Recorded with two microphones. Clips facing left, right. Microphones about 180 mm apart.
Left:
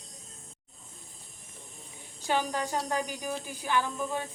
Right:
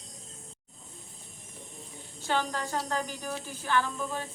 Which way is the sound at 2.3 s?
15° left (ahead or behind).